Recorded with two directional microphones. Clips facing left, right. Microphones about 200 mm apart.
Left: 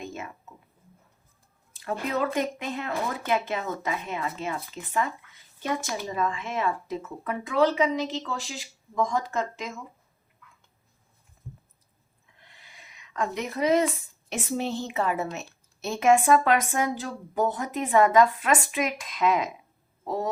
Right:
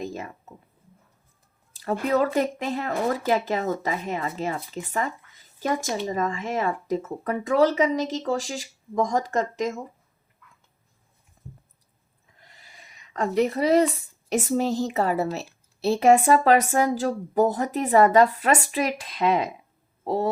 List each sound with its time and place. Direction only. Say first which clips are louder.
0.0 s a sound: right 4 dB; 35° right (ahead or behind)
1.7 s speech: right 6 dB; 40° right (ahead or behind)
13.1 s speech: right 6 dB; 35° right (ahead or behind)